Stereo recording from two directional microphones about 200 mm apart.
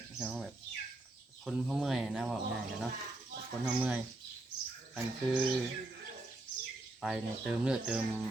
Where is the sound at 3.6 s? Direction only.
5° right (ahead or behind).